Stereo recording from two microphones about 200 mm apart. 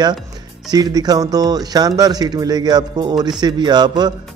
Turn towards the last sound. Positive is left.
turn(degrees=-20)  # may be behind; listen again after turning